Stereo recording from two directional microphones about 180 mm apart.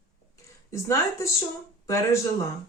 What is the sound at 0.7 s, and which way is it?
Speech, 15° left (ahead or behind).